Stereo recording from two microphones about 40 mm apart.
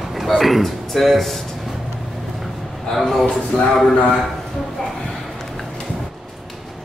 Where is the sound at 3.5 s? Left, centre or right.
Centre.